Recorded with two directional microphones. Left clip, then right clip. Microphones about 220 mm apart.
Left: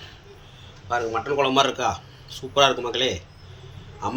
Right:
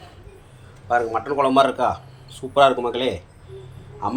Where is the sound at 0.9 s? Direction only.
10° right (ahead or behind).